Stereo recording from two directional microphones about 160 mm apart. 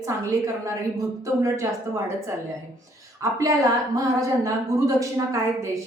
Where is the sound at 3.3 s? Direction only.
20° right (ahead or behind).